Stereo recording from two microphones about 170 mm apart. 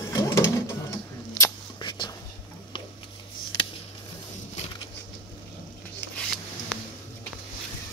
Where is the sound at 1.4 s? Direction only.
25° left (ahead or behind).